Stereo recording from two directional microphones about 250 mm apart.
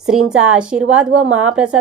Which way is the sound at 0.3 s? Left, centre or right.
Centre.